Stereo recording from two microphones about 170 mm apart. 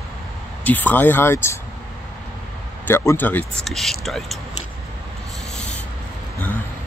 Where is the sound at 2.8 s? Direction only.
15° left (ahead or behind).